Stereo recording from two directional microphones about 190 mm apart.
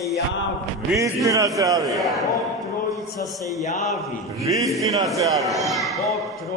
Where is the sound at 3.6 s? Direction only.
35° left (ahead or behind).